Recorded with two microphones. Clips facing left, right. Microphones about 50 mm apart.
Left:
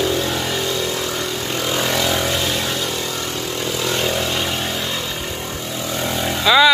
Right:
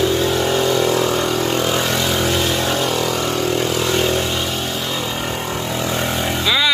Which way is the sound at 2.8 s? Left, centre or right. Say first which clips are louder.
Right 5 dB; right.